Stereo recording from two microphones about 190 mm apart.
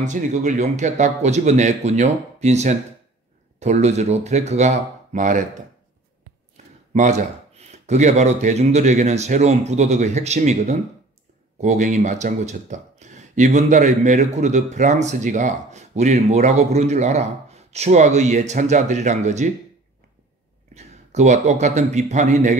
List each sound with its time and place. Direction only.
0.0 s speech: 40° right (ahead or behind)
6.5 s speech: 40° right (ahead or behind)
20.7 s a man's voice: 35° right (ahead or behind)